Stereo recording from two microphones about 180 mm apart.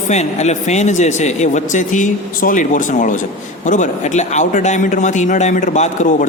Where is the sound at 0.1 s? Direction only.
40° left (ahead or behind).